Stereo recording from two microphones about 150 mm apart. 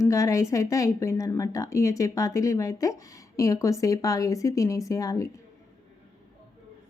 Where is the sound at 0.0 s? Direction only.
20° left (ahead or behind).